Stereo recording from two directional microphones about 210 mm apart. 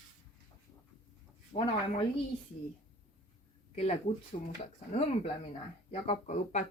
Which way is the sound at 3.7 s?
30° left (ahead or behind).